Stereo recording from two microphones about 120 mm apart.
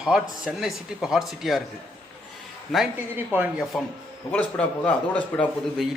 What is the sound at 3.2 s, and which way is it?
Speech, 15° right (ahead or behind).